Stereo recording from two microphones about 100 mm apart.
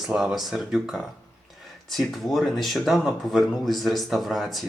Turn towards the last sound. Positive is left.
turn(degrees=0)  # may be behind; listen again after turning